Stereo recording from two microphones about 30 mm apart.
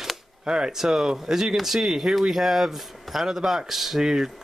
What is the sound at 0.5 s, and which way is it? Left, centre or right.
Speech, right.